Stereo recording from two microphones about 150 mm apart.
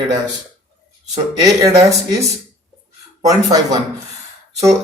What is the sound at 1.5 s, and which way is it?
Speech, 25° right (ahead or behind).